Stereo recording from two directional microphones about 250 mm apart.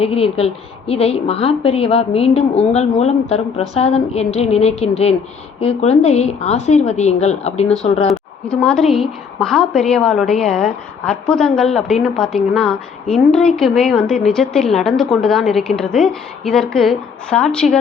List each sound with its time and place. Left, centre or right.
0.0 s a woman's voice: left
8.4 s a woman's voice: centre